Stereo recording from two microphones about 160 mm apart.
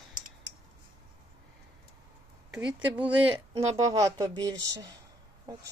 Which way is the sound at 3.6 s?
20° right (ahead or behind).